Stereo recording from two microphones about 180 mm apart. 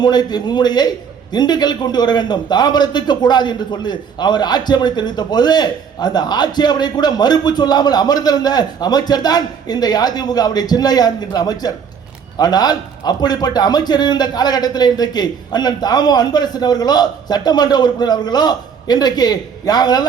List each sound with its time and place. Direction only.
0.0 s a man's voice: 25° left (ahead or behind)